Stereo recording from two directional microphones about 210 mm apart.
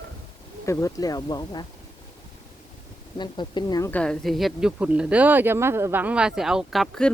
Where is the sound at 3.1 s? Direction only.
20° left (ahead or behind).